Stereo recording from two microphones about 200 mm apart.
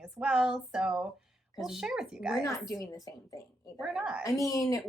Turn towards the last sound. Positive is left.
turn(degrees=15)  # may be behind; listen again after turning